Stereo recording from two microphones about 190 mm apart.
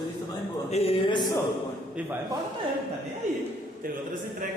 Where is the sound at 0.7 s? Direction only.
30° left (ahead or behind).